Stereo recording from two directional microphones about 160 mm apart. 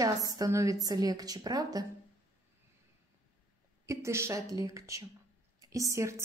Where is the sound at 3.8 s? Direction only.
15° right (ahead or behind).